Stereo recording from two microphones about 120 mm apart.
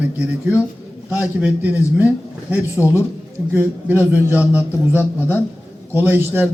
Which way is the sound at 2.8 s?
25° left (ahead or behind).